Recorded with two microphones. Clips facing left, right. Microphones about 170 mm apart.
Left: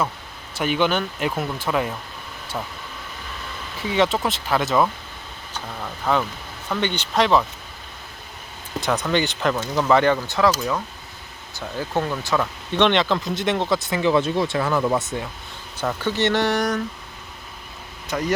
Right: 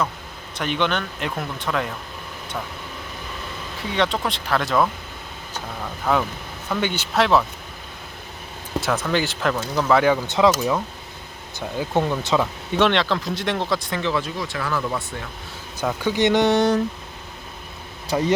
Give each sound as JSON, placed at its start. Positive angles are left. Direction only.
{"t": 0.5, "sound": "speech", "side_deg": 5}
{"t": 3.9, "sound": "speech", "side_deg": 5}
{"t": 8.8, "sound": "speech", "side_deg": 0}
{"t": 10.2, "sound": "speech", "side_deg": -20}
{"t": 11.8, "sound": "speech", "side_deg": -15}
{"t": 12.7, "sound": "speech", "side_deg": 0}
{"t": 14.0, "sound": "speech", "side_deg": 20}
{"t": 15.8, "sound": "speech", "side_deg": -10}
{"t": 18.1, "sound": "speech", "side_deg": -30}